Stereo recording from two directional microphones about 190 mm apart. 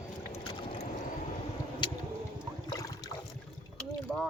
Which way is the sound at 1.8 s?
25° left (ahead or behind).